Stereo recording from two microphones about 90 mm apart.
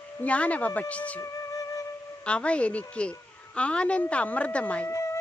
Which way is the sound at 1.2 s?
40° left (ahead or behind).